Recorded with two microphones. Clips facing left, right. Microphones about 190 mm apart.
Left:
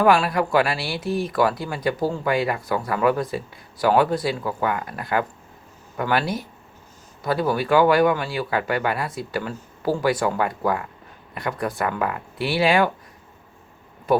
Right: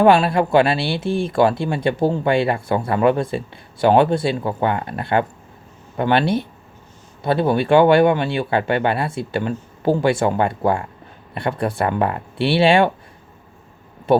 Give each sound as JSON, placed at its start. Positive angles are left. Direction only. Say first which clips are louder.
{"t": 0.0, "sound": "speech", "louder": "right 4 dB", "side_deg": -25}
{"t": 14.1, "sound": "speech", "louder": "right 4 dB", "side_deg": -25}